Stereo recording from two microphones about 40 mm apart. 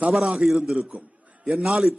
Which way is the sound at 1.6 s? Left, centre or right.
Centre.